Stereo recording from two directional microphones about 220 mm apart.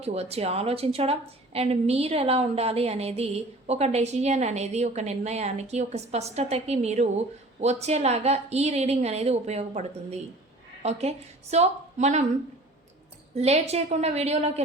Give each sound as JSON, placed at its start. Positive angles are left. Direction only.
{"t": 0.0, "sound": "a woman's voice", "side_deg": -30}
{"t": 13.3, "sound": "a woman's voice", "side_deg": -30}